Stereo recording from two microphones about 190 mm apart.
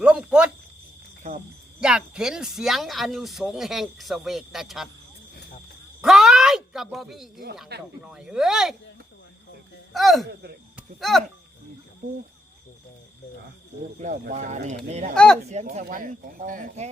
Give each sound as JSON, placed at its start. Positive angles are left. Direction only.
{"t": 0.0, "sound": "speech", "side_deg": -5}
{"t": 1.2, "sound": "speech", "side_deg": -35}
{"t": 1.8, "sound": "speech", "side_deg": -5}
{"t": 6.0, "sound": "a sound", "side_deg": 0}
{"t": 7.7, "sound": "speech", "side_deg": -60}
{"t": 8.0, "sound": "speech", "side_deg": -5}
{"t": 9.9, "sound": "speech", "side_deg": 0}
{"t": 10.8, "sound": "a sound", "side_deg": 0}
{"t": 14.0, "sound": "speech", "side_deg": -40}
{"t": 15.1, "sound": "speech", "side_deg": 5}
{"t": 15.4, "sound": "speech", "side_deg": -35}